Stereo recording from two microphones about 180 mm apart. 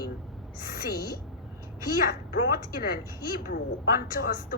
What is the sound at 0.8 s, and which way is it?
A woman's voice, 55° left (ahead or behind).